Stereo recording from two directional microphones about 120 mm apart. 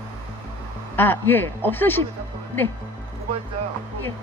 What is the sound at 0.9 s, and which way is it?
Speech, 15° left (ahead or behind).